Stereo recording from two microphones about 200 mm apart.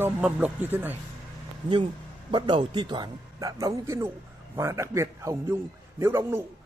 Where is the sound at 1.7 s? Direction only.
25° right (ahead or behind).